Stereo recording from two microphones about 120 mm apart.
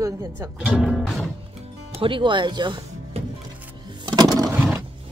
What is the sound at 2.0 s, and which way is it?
Speech, 45° right (ahead or behind).